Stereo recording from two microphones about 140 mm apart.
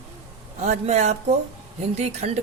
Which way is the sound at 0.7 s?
55° right (ahead or behind).